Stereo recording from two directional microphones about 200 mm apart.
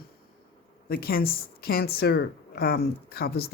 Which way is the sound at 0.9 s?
50° left (ahead or behind).